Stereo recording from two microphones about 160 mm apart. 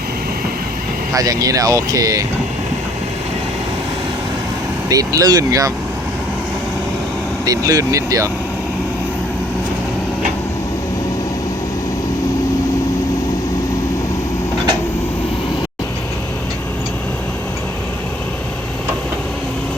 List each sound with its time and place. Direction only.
1.1 s speech: 20° right (ahead or behind)
4.9 s speech: 20° right (ahead or behind)
7.4 s speech: 20° right (ahead or behind)